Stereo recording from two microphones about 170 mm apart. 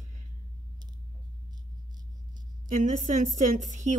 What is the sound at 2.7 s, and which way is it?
Speech, 50° right (ahead or behind).